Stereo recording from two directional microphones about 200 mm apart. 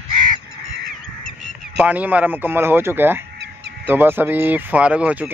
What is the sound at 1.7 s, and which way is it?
Speech, 5° right (ahead or behind).